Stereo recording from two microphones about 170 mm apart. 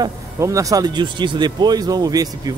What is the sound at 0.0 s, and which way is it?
Speech, 20° right (ahead or behind).